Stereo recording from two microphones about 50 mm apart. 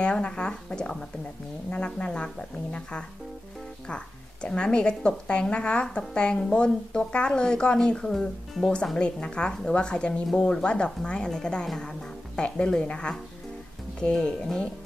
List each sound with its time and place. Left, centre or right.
0.0 s speech: centre
12.4 s speech: centre
14.1 s speech: centre